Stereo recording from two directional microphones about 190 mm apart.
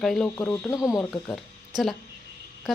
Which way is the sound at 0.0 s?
Centre (ahead or behind).